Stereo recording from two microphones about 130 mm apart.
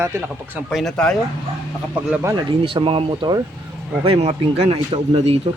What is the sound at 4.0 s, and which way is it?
Speech, 50° right (ahead or behind).